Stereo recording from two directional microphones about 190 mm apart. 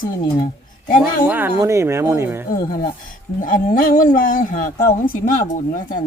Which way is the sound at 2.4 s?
50° left (ahead or behind).